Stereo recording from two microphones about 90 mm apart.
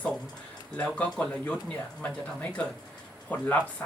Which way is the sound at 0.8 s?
15° left (ahead or behind).